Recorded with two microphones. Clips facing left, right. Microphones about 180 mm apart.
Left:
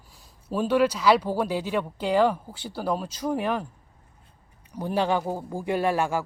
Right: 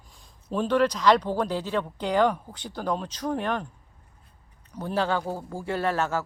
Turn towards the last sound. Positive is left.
turn(degrees=15)  # may be behind; listen again after turning